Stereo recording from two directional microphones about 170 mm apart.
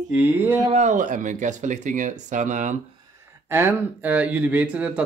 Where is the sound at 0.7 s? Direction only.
45° right (ahead or behind).